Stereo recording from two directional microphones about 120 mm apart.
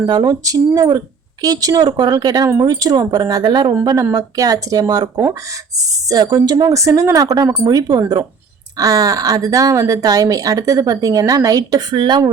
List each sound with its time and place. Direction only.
0.0 s a woman's voice: 35° right (ahead or behind)